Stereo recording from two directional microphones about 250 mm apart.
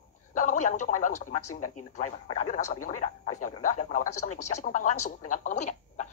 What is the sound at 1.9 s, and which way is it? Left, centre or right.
Speech, left.